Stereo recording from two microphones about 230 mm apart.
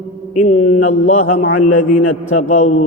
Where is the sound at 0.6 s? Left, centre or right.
Left.